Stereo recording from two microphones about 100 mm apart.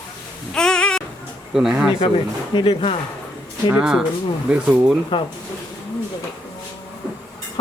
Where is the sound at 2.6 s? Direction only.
75° left (ahead or behind).